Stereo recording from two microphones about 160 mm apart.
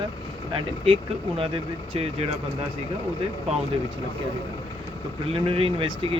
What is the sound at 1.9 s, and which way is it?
Speech, 40° right (ahead or behind).